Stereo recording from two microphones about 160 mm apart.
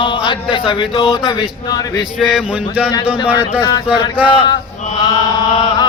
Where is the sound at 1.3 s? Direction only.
25° left (ahead or behind).